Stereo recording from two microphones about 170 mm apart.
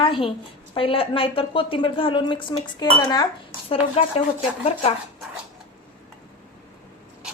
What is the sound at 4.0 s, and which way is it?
Speech, 40° left (ahead or behind).